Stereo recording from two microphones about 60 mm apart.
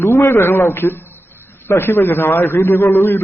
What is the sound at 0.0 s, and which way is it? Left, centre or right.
A man's voice, left.